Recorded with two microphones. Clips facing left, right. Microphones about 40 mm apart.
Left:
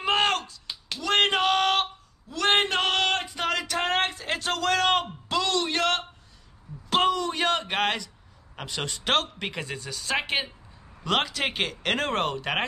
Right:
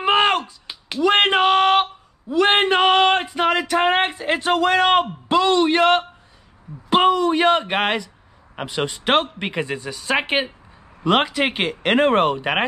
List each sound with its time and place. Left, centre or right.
0.0 s slap: centre
6.9 s speech: centre